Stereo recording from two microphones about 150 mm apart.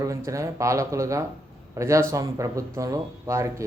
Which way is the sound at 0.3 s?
20° right (ahead or behind).